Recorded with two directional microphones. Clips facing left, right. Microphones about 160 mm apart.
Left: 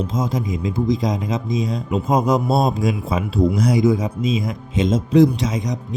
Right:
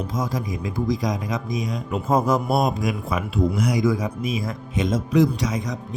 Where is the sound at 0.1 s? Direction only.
20° left (ahead or behind).